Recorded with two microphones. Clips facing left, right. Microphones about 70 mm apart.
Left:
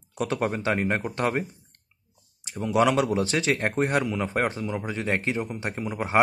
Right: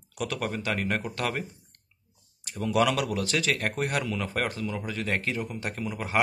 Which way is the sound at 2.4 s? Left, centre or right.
Centre.